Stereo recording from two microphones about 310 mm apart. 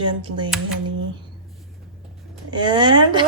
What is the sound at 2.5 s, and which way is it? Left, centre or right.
Speech, centre.